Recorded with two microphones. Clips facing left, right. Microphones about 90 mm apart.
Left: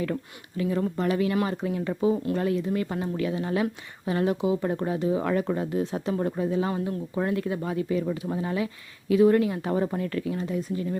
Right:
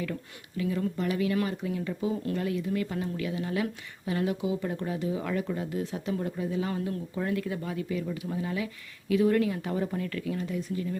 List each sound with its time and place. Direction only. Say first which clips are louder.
0.0 s speech: left 5 dB; 40° left (ahead or behind)
8.6 s speech: left 5 dB; 25° left (ahead or behind)
9.6 s speech: left 4 dB; 40° left (ahead or behind)